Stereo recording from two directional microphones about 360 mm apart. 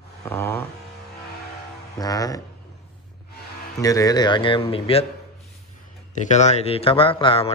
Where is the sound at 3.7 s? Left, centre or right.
Centre.